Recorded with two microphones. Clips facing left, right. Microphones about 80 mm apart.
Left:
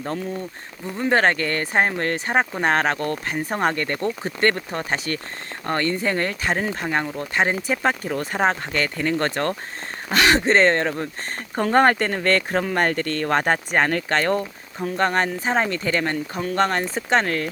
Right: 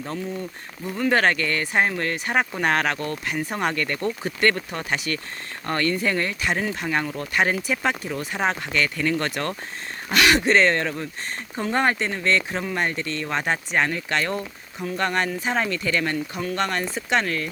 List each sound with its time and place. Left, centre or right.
0.9 s speech: left
6.8 s speech: left
7.9 s speech: left
11.5 s speech: left